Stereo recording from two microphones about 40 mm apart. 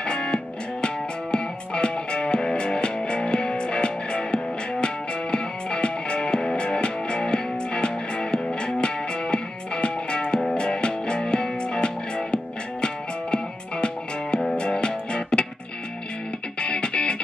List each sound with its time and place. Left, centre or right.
0.0 s music: left
16.5 s music: left